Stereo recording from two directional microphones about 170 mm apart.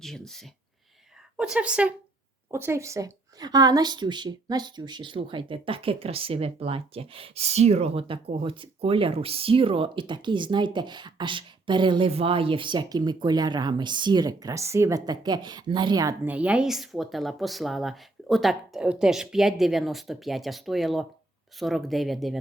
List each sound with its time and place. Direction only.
0.0 s a woman's voice: centre (ahead or behind); by 16.1 s 25° right (ahead or behind)
16.2 s speech: 10° right (ahead or behind)